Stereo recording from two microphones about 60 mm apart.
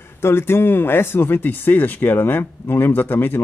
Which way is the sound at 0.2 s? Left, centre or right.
Left.